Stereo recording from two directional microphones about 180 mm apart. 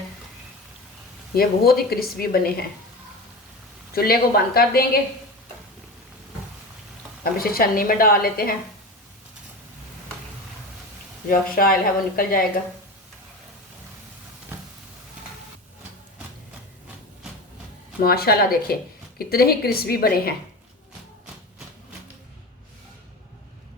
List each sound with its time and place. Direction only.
1.4 s a woman's voice: 55° left (ahead or behind)
3.9 s a woman's voice: 55° left (ahead or behind)
7.3 s a woman's voice: 55° left (ahead or behind)
11.3 s speech: 55° left (ahead or behind)
18.0 s a woman's voice: 60° left (ahead or behind)